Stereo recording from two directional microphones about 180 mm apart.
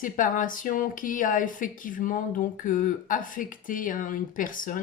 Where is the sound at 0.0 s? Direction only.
50° left (ahead or behind).